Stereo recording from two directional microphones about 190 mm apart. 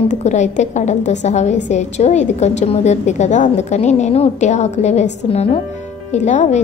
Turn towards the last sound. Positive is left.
turn(degrees=35)  # may be behind; listen again after turning